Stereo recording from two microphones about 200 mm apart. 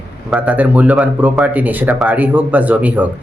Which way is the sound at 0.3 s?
5° right (ahead or behind).